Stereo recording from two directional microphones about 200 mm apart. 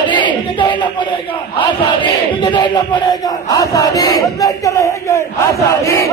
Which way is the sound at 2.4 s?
25° left (ahead or behind).